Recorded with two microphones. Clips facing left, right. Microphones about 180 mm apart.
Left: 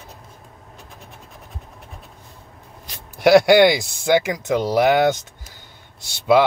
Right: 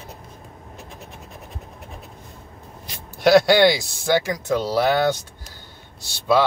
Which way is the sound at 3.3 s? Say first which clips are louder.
Left 2 dB; 15° left (ahead or behind).